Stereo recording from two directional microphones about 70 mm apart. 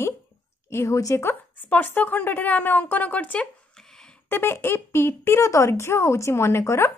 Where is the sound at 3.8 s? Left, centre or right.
Centre.